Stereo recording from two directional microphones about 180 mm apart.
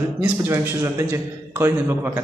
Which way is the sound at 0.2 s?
15° right (ahead or behind).